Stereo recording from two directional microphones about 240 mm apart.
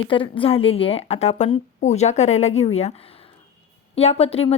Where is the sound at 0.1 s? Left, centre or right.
Left.